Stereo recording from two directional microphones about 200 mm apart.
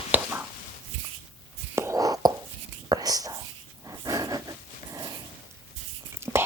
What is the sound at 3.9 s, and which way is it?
Wild animals, 20° right (ahead or behind).